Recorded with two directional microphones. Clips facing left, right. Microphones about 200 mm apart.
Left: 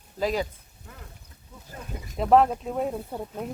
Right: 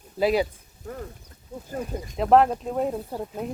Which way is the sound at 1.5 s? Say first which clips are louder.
Right 11 dB; 50° right (ahead or behind).